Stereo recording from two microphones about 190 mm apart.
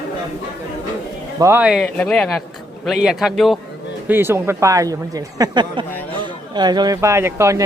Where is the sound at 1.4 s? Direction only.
10° right (ahead or behind).